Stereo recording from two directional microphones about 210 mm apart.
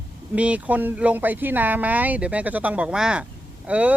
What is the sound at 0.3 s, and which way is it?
Speech, 5° right (ahead or behind).